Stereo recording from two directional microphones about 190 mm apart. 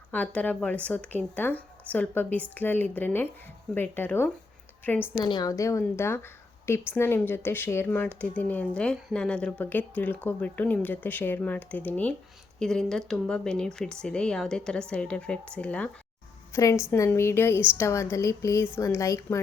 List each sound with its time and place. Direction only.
0.1 s a woman's voice: 10° left (ahead or behind)
5.2 s a woman's voice: 20° left (ahead or behind)